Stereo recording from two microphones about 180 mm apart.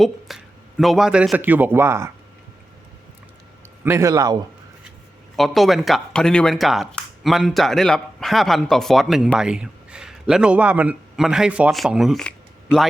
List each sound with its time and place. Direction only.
0.0 s a man's voice: centre (ahead or behind)
3.8 s a man's voice: 15° right (ahead or behind)
5.4 s a man's voice: centre (ahead or behind)
12.7 s speech: 10° left (ahead or behind)